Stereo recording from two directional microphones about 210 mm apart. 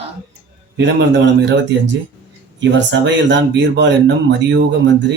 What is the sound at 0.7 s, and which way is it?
Speech, 60° right (ahead or behind).